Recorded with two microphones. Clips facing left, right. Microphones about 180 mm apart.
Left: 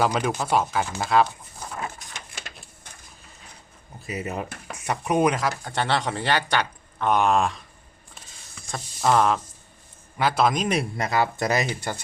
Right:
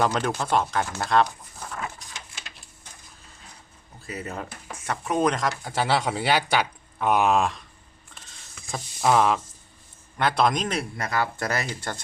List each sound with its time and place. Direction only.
0.0 s speech: 10° left (ahead or behind)
4.0 s speech: 15° left (ahead or behind); by 7.6 s centre (ahead or behind)
8.6 s a sound: centre (ahead or behind)
10.2 s speech: 5° left (ahead or behind)
10.8 s speech: 20° left (ahead or behind)